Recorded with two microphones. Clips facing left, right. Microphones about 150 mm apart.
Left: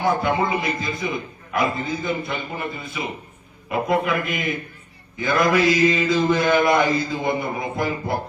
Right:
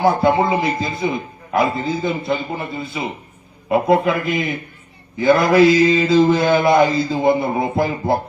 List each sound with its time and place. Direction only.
0.0 s a man's voice: 30° right (ahead or behind)